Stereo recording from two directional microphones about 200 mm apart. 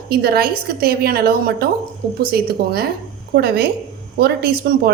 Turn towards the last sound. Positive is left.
turn(degrees=-50)  # may be behind; listen again after turning